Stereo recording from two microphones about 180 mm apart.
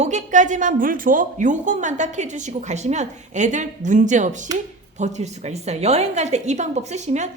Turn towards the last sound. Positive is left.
turn(degrees=-40)  # may be behind; listen again after turning